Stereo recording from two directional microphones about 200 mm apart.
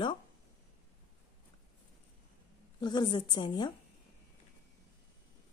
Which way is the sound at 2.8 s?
20° left (ahead or behind).